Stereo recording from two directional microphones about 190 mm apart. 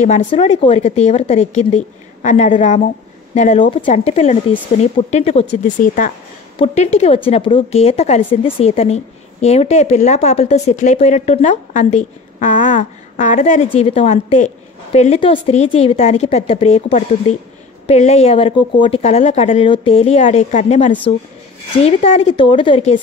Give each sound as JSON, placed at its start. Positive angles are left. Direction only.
{"t": 0.0, "sound": "a woman's voice", "side_deg": 40}
{"t": 5.6, "sound": "a woman's voice", "side_deg": 45}